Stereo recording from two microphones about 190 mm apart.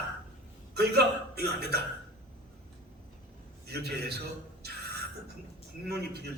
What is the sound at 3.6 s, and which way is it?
Speech, 60° right (ahead or behind).